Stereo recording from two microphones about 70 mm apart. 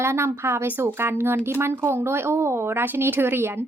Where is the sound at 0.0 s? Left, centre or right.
Right.